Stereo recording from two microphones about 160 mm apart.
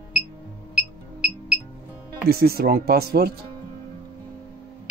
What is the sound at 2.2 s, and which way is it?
Speech, 75° right (ahead or behind).